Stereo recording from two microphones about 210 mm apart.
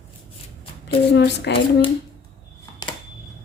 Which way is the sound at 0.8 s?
55° left (ahead or behind).